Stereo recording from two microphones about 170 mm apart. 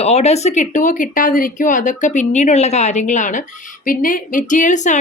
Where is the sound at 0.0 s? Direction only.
40° left (ahead or behind).